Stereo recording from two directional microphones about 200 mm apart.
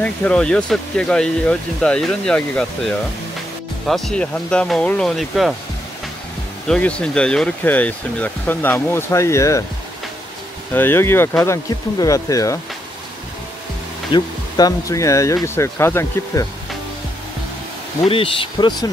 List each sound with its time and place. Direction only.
0.0 s speech: 5° left (ahead or behind)
3.8 s speech: centre (ahead or behind)
6.7 s speech: 5° left (ahead or behind)
10.7 s speech: 10° left (ahead or behind)
14.1 s speech: 15° left (ahead or behind)
18.0 s speech: 25° left (ahead or behind)